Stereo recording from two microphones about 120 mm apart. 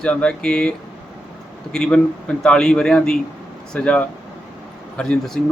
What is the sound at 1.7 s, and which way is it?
A man's voice, 5° left (ahead or behind).